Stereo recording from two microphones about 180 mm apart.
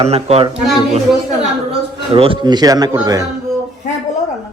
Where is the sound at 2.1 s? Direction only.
30° right (ahead or behind).